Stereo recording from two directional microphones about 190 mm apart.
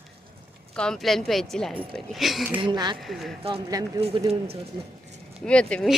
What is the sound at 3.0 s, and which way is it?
Speech, centre (ahead or behind).